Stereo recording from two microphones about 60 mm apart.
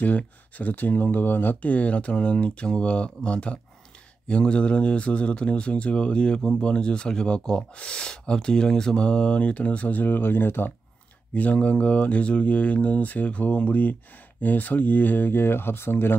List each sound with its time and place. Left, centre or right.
0.0 s speech: left
11.3 s speech: left